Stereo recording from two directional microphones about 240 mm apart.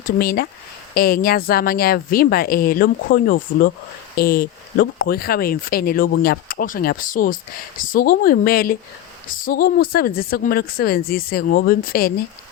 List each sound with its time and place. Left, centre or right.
0.2 s speech: left